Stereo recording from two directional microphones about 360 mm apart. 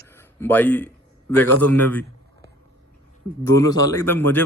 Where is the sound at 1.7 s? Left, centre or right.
Centre.